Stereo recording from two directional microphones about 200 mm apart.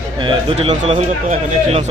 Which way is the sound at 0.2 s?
25° right (ahead or behind).